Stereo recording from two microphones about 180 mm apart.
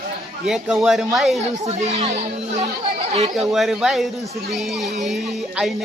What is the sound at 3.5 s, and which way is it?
Speech, centre (ahead or behind).